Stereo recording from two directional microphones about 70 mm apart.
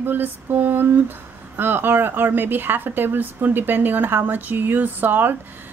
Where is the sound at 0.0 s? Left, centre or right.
Right.